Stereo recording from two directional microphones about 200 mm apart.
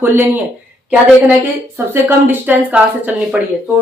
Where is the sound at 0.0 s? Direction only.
10° right (ahead or behind).